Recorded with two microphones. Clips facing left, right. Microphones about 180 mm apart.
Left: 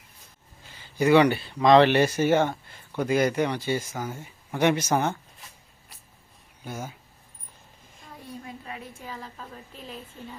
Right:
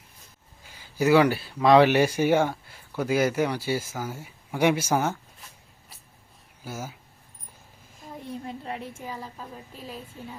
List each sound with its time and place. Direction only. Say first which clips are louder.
0.6 s speech: even; 10° right (ahead or behind)
6.7 s speech: even; 5° right (ahead or behind)
8.2 s a sound: right 4 dB; 35° right (ahead or behind)
9.0 s a woman's voice: right 2 dB; 10° right (ahead or behind)